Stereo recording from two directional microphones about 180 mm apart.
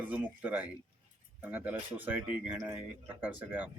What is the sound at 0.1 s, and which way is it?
Speech, 10° right (ahead or behind).